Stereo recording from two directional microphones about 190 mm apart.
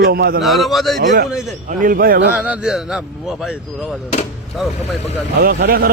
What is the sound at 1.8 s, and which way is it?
Speech, 50° right (ahead or behind).